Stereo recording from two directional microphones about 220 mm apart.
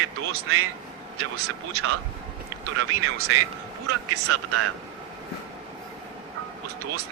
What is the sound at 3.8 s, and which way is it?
Speech, 90° right.